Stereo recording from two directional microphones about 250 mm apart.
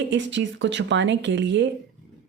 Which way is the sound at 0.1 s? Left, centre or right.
Right.